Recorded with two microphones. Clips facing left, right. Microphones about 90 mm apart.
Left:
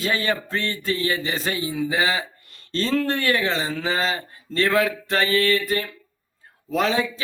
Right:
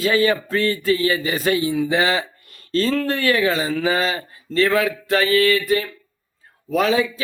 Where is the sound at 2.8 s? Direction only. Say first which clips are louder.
Left 1 dB; centre (ahead or behind).